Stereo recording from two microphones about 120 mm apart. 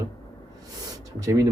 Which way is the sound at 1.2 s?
30° right (ahead or behind).